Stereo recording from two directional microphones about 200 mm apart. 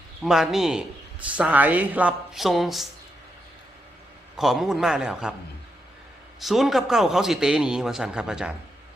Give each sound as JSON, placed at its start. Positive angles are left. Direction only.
{"t": 0.2, "sound": "a man's voice", "side_deg": 0}
{"t": 4.4, "sound": "a man's voice", "side_deg": 0}
{"t": 6.4, "sound": "a man's voice", "side_deg": 0}